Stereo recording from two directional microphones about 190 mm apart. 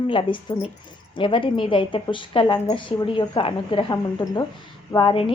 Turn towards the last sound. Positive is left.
turn(degrees=25)  # may be behind; listen again after turning